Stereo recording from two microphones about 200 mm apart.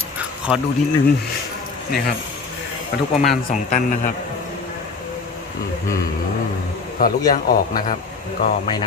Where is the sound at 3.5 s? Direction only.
40° left (ahead or behind).